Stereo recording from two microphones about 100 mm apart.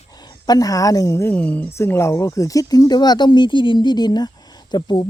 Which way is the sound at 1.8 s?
25° left (ahead or behind).